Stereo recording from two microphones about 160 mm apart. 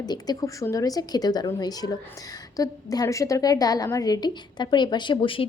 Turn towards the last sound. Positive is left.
turn(degrees=35)  # may be behind; listen again after turning